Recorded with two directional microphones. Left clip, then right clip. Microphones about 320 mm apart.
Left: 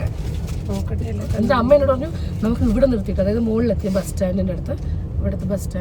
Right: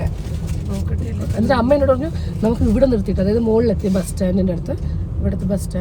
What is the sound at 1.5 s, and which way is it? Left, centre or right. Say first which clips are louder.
Speech: even; centre.